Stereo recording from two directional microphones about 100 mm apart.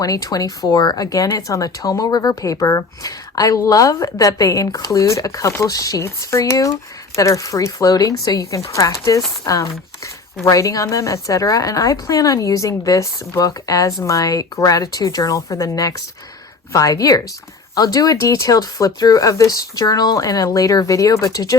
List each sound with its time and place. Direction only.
0.0 s speech: 35° left (ahead or behind)